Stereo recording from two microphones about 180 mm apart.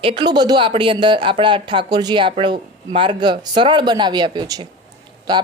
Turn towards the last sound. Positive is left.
turn(degrees=-20)  # may be behind; listen again after turning